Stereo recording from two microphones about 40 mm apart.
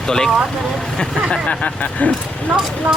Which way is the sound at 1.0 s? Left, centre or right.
Left.